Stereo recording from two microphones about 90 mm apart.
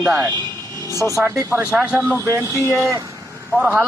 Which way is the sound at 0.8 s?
30° left (ahead or behind).